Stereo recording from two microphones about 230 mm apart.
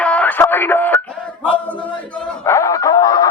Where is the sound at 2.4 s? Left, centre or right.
Centre.